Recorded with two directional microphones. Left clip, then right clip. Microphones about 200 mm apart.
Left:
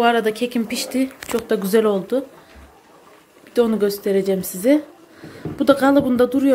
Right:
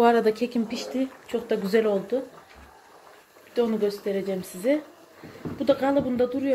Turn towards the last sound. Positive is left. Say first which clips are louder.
# left 8 dB
turn(degrees=30)  # may be behind; listen again after turning